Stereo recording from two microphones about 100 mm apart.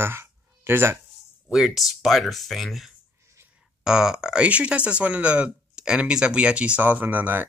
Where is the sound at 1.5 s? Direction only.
5° right (ahead or behind).